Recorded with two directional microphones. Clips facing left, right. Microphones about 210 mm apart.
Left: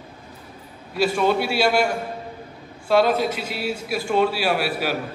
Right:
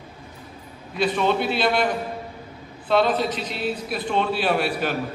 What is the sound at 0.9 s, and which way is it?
A man's voice, 10° left (ahead or behind).